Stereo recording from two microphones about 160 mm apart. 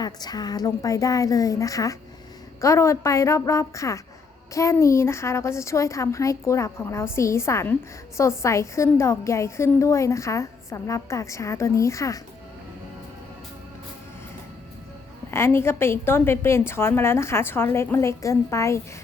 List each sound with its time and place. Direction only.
0.0 s a woman's voice: 25° left (ahead or behind)
15.3 s a woman's voice: 15° left (ahead or behind)